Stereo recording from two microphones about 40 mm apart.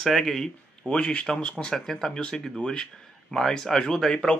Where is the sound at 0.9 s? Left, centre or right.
Left.